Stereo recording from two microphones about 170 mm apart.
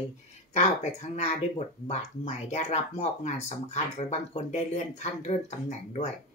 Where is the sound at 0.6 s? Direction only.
40° left (ahead or behind).